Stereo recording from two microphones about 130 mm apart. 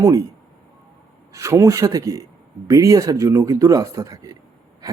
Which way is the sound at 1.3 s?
25° right (ahead or behind).